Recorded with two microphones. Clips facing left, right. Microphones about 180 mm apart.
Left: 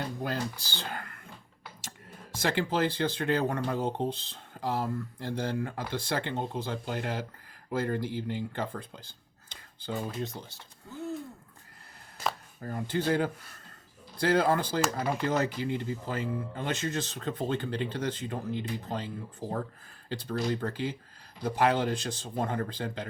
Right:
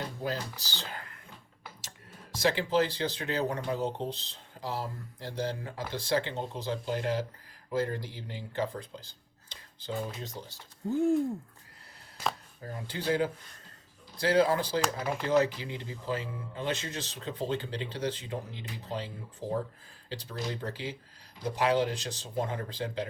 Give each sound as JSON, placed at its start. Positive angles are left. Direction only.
{"t": 0.2, "sound": "speech", "side_deg": 55}
{"t": 10.8, "sound": "a sound", "side_deg": -50}
{"t": 12.7, "sound": "speech", "side_deg": 50}